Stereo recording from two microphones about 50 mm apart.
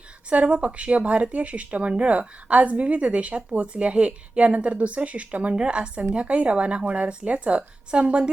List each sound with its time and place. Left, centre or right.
0.3 s speech: right